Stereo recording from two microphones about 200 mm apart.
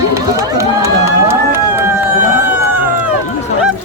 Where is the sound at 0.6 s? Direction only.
15° right (ahead or behind).